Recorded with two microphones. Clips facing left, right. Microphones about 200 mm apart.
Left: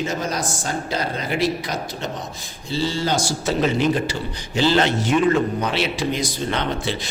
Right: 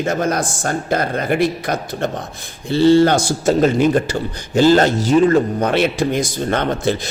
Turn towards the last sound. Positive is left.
turn(degrees=-45)  # may be behind; listen again after turning